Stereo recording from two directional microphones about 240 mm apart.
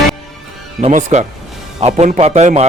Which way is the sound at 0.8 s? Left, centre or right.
Right.